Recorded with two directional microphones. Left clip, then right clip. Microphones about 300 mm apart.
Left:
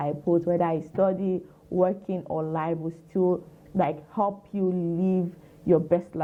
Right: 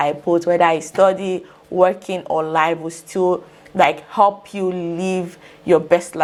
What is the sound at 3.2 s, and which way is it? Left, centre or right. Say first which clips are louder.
Speech: right 7 dB; right.